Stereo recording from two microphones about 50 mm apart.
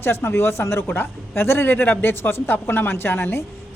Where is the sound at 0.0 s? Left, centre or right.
Left.